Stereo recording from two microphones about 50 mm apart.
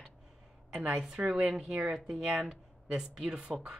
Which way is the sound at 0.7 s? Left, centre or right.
Right.